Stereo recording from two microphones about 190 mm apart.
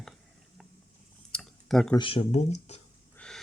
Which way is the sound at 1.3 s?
Centre (ahead or behind).